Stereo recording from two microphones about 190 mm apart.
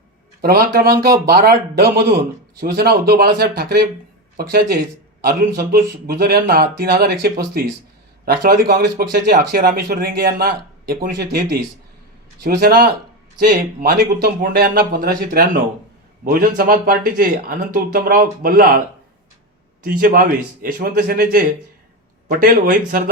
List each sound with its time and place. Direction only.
0.4 s speech: 55° right (ahead or behind)
19.8 s speech: 50° right (ahead or behind)